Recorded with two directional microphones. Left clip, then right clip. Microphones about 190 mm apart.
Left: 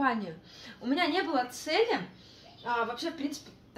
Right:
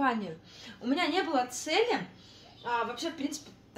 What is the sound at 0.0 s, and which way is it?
A woman's voice, 15° right (ahead or behind).